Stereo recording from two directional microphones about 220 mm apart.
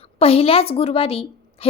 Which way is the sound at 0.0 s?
25° left (ahead or behind).